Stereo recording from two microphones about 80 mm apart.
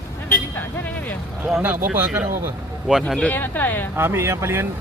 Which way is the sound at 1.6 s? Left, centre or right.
Right.